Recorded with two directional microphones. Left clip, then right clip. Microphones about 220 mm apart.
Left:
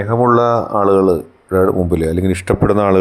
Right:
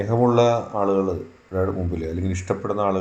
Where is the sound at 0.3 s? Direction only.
35° left (ahead or behind).